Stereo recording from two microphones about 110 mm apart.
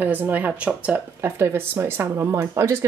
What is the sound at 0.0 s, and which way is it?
Speech, 15° right (ahead or behind).